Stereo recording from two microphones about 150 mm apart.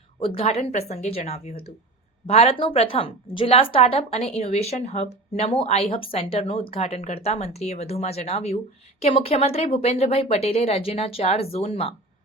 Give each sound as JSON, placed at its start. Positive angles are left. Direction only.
{"t": 0.2, "sound": "a woman's voice", "side_deg": 40}